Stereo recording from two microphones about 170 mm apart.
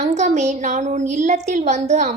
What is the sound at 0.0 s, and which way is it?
A woman's voice, 40° right (ahead or behind).